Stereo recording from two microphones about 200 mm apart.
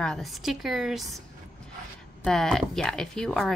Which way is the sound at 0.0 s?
Centre (ahead or behind).